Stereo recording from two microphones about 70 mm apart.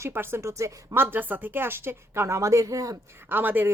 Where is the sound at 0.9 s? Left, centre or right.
Right.